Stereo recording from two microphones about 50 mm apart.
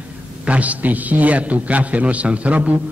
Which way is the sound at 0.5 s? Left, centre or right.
Right.